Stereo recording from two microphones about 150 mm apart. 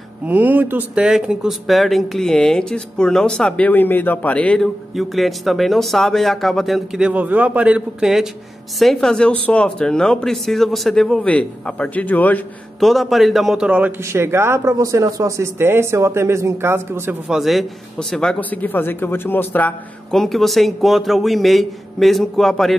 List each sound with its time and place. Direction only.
0.3 s speech: 10° right (ahead or behind); by 12.4 s 10° left (ahead or behind)
12.8 s a man's voice: centre (ahead or behind); by 17.2 s 15° right (ahead or behind)
17.3 s speech: centre (ahead or behind)